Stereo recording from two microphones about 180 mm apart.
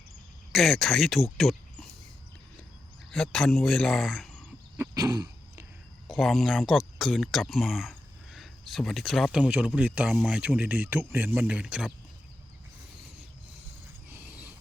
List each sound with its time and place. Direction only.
0.5 s speech: centre (ahead or behind)
3.1 s speech: 5° left (ahead or behind)
4.8 s throat clearing: 20° right (ahead or behind)
6.1 s speech: centre (ahead or behind)
14.1 s a sound: 10° right (ahead or behind)